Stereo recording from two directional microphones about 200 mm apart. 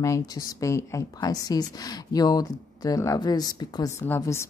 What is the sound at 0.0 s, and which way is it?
A woman's voice, 15° left (ahead or behind).